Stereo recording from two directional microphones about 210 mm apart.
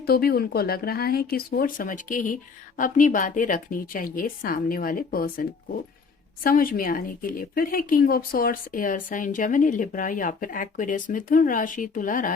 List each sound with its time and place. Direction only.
0.0 s speech: 45° left (ahead or behind)